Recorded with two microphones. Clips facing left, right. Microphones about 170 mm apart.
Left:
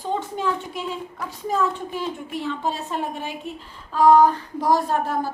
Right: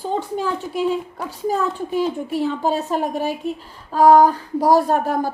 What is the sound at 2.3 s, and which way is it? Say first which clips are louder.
A woman's voice: right 5 dB; 40° right (ahead or behind).